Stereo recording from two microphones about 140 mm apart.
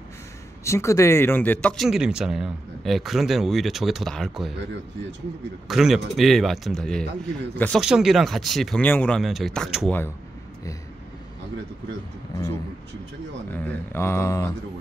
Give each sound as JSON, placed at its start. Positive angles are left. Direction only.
{"t": 0.7, "sound": "speech", "side_deg": 20}
{"t": 1.9, "sound": "speech", "side_deg": -5}
{"t": 5.7, "sound": "speech", "side_deg": 0}
{"t": 7.8, "sound": "speech", "side_deg": -5}
{"t": 9.8, "sound": "speech", "side_deg": 15}
{"t": 13.5, "sound": "speech", "side_deg": 15}